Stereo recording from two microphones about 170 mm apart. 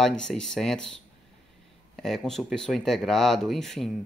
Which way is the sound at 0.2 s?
5° left (ahead or behind).